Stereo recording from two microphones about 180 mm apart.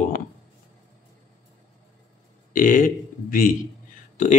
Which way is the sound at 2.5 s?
50° left (ahead or behind).